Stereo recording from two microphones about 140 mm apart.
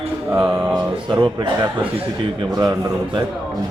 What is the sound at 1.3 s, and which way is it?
A man's voice, 30° right (ahead or behind).